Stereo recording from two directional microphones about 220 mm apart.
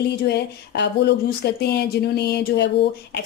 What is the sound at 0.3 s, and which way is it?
A woman's voice, 50° left (ahead or behind).